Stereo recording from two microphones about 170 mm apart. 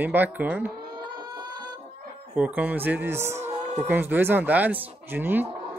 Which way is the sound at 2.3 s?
10° right (ahead or behind).